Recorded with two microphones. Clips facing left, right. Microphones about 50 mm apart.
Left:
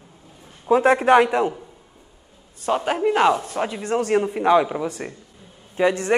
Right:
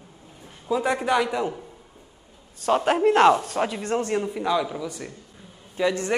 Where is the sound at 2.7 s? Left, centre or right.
Centre.